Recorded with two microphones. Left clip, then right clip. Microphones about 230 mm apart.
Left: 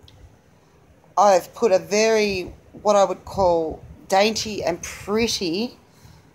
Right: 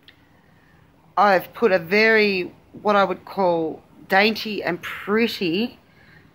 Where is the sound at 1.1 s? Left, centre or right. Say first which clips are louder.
Left 1 dB; right.